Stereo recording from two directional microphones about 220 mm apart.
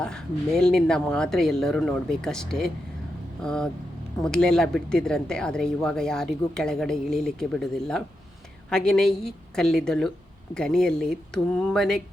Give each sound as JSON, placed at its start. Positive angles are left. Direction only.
{"t": 0.0, "sound": "speech", "side_deg": 5}